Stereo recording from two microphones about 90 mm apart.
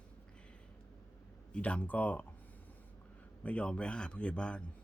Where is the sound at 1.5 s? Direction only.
15° left (ahead or behind).